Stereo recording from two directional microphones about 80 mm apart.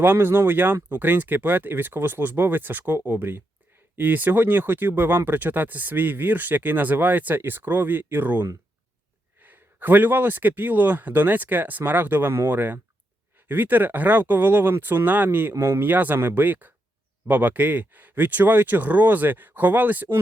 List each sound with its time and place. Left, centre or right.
0.0 s speech: right
15.5 s speech: right
15.8 s speech: right